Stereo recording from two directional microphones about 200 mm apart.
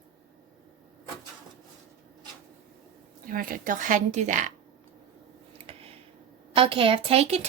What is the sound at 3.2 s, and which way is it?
A woman's voice, 45° right (ahead or behind).